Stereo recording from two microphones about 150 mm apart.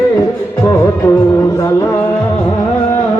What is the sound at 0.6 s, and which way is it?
Music, 20° left (ahead or behind).